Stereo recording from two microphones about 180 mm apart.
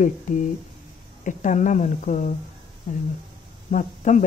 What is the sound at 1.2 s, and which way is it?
Speech, 45° left (ahead or behind).